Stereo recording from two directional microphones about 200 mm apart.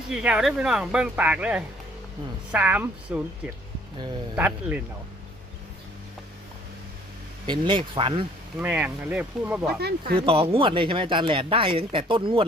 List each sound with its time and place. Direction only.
0.1 s speech: 5° right (ahead or behind)
7.4 s speech: 25° right (ahead or behind)
8.5 s speech: 10° right (ahead or behind)
10.2 s speech: 25° right (ahead or behind)